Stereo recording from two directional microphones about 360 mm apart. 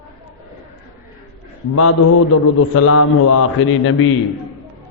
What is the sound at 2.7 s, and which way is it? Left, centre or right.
A man's voice, left.